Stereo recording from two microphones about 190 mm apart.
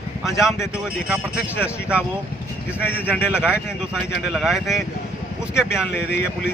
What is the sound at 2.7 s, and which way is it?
Speech, 10° left (ahead or behind).